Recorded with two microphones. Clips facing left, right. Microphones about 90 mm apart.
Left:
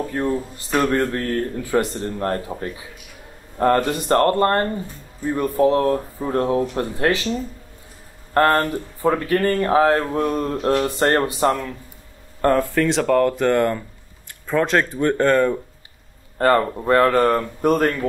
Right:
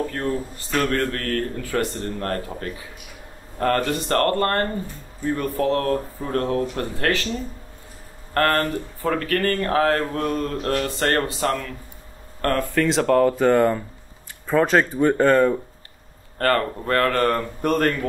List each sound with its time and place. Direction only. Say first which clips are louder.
0.0 s speech: left 2 dB; 15° left (ahead or behind)
8.4 s speech: left 3 dB; 20° left (ahead or behind)
12.4 s speech: left 5 dB; 15° left (ahead or behind)
12.7 s speech: left 1 dB; centre (ahead or behind)
16.3 s speech: left 4 dB; 15° left (ahead or behind)